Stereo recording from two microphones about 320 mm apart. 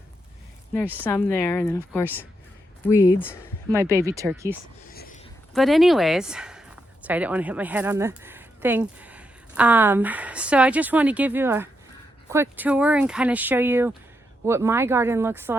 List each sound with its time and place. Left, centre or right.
0.9 s speech: centre
3.7 s speech: centre
4.9 s a sound: left
5.5 s speech: centre